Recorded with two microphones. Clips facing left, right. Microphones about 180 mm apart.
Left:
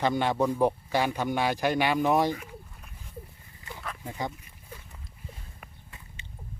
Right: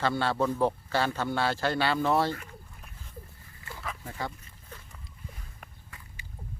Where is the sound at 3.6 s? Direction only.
20° left (ahead or behind).